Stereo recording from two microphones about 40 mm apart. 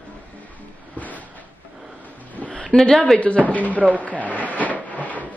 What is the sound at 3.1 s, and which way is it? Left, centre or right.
Speech, left.